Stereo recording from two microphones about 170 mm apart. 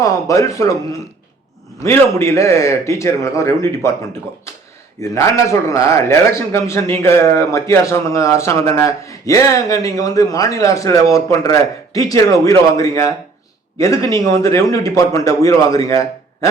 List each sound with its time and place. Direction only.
0.0 s speech: 20° left (ahead or behind)
1.8 s a man's voice: 15° left (ahead or behind)
4.9 s a man's voice: 20° left (ahead or behind)